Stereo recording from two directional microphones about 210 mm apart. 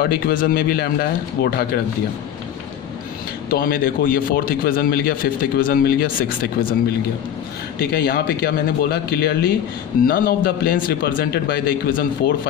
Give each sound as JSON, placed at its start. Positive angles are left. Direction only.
{"t": 0.0, "sound": "a man's voice", "side_deg": 45}
{"t": 3.4, "sound": "a man's voice", "side_deg": 45}
{"t": 7.8, "sound": "a man's voice", "side_deg": 45}